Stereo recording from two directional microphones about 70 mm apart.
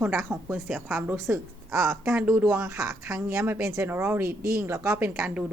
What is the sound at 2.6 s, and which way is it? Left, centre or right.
Speech, right.